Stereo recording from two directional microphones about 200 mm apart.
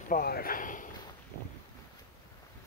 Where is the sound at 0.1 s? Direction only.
50° left (ahead or behind).